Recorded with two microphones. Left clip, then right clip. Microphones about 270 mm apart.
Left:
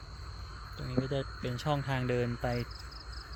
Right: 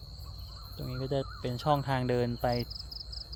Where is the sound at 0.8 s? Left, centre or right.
Centre.